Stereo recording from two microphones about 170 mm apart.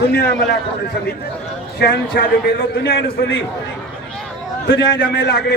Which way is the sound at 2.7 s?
75° left (ahead or behind).